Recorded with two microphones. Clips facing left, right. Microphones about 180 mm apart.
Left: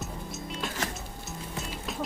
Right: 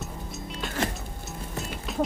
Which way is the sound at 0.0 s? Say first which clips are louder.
Even; centre (ahead or behind).